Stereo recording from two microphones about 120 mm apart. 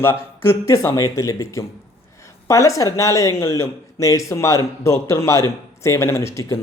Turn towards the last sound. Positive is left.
turn(degrees=25)  # may be behind; listen again after turning